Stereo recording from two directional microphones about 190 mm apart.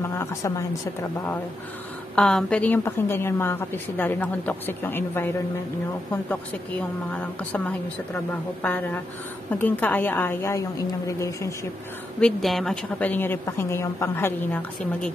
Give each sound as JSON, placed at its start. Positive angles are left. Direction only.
{"t": 0.2, "sound": "a woman's voice", "side_deg": 15}
{"t": 2.1, "sound": "a woman's voice", "side_deg": 5}
{"t": 7.1, "sound": "a woman's voice", "side_deg": 5}
{"t": 12.2, "sound": "a woman's voice", "side_deg": 0}